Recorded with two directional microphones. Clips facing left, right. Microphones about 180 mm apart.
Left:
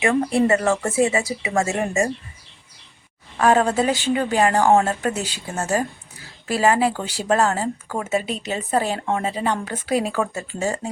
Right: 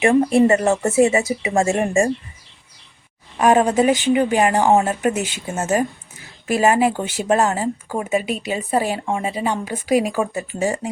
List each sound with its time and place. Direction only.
0.0 s speech: 25° right (ahead or behind)
3.3 s a woman's voice: 15° right (ahead or behind)